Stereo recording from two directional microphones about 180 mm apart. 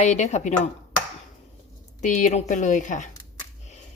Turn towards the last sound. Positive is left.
turn(degrees=45)  # may be behind; listen again after turning